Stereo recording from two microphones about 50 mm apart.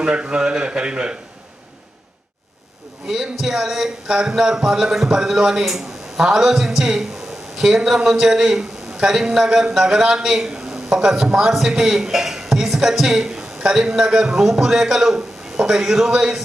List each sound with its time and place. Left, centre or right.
0.0 s a man's voice: centre
3.1 s a man's voice: centre